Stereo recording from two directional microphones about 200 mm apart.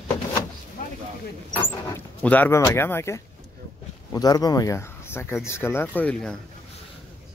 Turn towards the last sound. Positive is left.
turn(degrees=10)  # may be behind; listen again after turning